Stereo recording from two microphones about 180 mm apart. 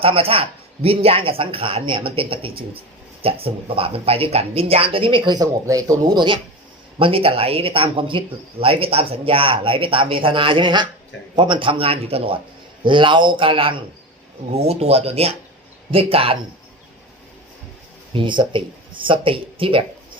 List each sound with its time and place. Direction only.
0.0 s speech: 30° right (ahead or behind)
18.1 s speech: 25° right (ahead or behind)